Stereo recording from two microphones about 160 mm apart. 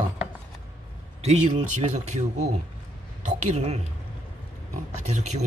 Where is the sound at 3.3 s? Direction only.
40° right (ahead or behind).